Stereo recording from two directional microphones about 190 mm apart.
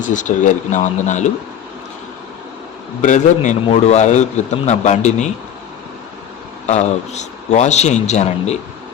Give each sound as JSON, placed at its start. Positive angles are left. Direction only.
{"t": 0.0, "sound": "a man's voice", "side_deg": 40}
{"t": 3.0, "sound": "a man's voice", "side_deg": 40}
{"t": 6.7, "sound": "a man's voice", "side_deg": 35}